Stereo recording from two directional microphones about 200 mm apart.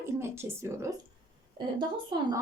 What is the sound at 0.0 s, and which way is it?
Speech, 15° right (ahead or behind).